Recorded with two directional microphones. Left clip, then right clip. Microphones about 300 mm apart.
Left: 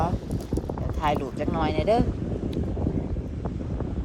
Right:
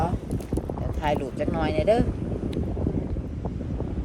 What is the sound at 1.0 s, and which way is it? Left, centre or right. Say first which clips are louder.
Speech: even; centre.